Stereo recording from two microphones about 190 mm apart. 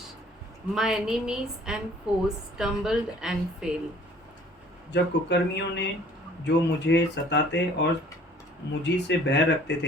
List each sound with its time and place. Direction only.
0.7 s a woman's voice: 5° right (ahead or behind)
4.9 s speech: 65° left (ahead or behind)